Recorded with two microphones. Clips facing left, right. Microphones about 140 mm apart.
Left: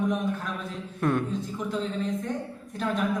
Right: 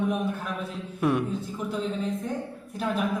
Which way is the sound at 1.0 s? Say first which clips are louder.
Right 1 dB; 5° right (ahead or behind).